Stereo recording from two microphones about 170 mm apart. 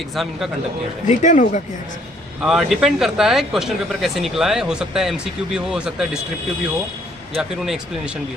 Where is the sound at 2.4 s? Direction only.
5° right (ahead or behind).